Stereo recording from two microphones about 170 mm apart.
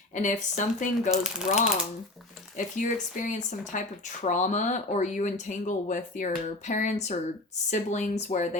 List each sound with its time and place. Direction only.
0.1 s speech: 45° left (ahead or behind)
1.1 s speech: centre (ahead or behind)
2.6 s speech: 50° left (ahead or behind)